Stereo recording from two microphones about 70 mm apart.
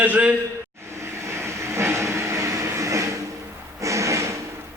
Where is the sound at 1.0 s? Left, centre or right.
Right.